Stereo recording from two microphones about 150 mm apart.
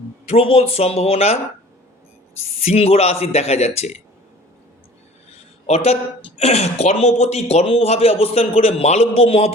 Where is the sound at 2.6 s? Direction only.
45° left (ahead or behind).